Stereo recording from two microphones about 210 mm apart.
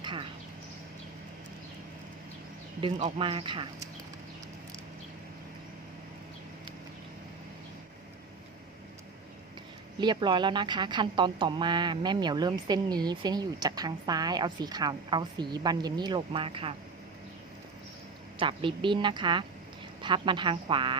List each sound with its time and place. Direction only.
0.0 s a sound: 25° right (ahead or behind)
2.8 s a woman's voice: 25° right (ahead or behind)
10.0 s a woman's voice: 20° right (ahead or behind)
18.3 s a woman's voice: 25° right (ahead or behind)